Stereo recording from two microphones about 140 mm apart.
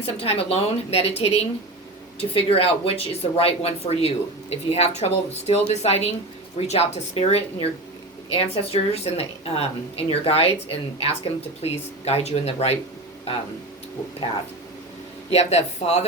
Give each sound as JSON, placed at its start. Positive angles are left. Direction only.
{"t": 0.0, "sound": "speech", "side_deg": 45}
{"t": 15.3, "sound": "speech", "side_deg": 50}